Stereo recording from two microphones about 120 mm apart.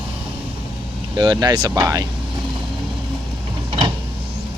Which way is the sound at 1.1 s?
40° right (ahead or behind).